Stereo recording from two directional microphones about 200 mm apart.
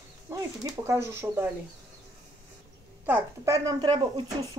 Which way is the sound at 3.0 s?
10° right (ahead or behind).